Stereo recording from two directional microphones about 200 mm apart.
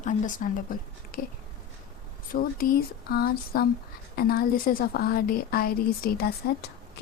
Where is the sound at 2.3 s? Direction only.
45° left (ahead or behind).